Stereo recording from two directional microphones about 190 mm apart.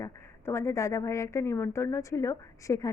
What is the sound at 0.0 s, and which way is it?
Speech, 15° left (ahead or behind).